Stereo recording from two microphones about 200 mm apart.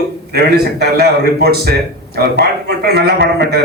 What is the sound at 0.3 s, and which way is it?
A man's voice, 50° right (ahead or behind).